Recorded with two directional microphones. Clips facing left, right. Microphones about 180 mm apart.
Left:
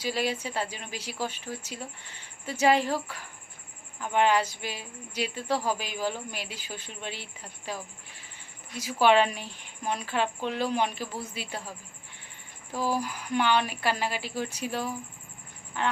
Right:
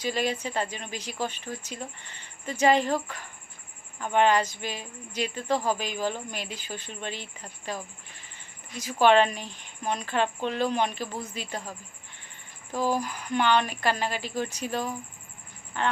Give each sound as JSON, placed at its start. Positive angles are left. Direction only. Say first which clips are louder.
{"t": 0.0, "sound": "a woman's voice", "louder": "right 1 dB", "side_deg": 5}
{"t": 12.9, "sound": "a woman's voice", "louder": "right 1 dB", "side_deg": 10}